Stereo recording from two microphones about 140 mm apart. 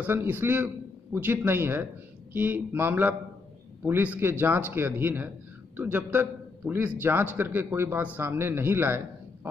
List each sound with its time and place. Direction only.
0.0 s a man's voice: 15° right (ahead or behind)